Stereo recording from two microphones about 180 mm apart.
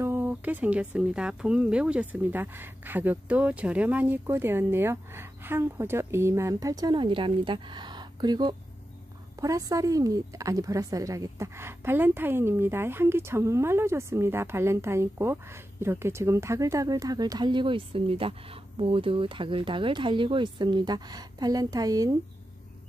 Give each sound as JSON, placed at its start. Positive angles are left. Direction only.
{"t": 0.0, "sound": "a woman's voice", "side_deg": -10}